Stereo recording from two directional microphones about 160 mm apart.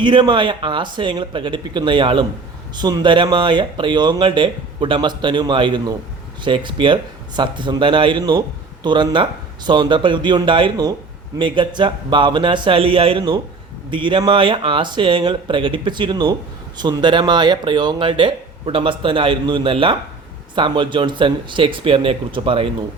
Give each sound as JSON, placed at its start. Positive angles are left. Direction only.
{"t": 0.0, "sound": "speech", "side_deg": -30}